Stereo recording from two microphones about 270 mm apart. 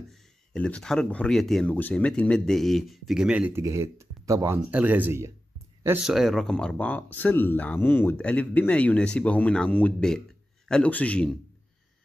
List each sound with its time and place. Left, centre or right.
0.5 s speech: centre